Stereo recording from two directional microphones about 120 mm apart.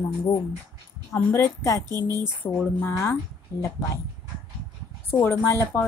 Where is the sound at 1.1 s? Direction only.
20° left (ahead or behind).